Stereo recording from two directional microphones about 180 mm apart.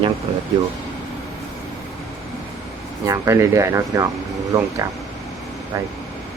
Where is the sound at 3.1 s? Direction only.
15° right (ahead or behind).